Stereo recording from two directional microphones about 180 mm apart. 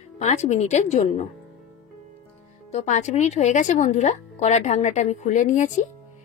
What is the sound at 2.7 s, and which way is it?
Speech, 40° left (ahead or behind).